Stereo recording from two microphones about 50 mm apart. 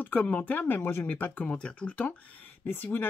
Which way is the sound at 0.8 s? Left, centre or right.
Left.